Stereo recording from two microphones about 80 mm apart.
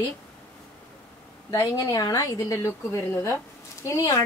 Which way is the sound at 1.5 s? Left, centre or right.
Left.